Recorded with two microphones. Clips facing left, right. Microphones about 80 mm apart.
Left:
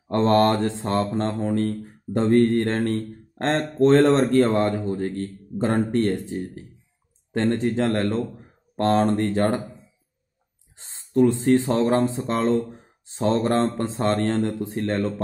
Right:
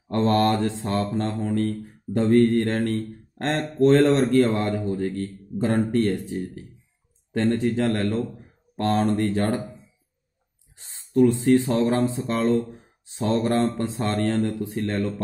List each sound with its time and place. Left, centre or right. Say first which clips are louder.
0.1 s speech: left 2 dB; left
10.8 s speech: even; left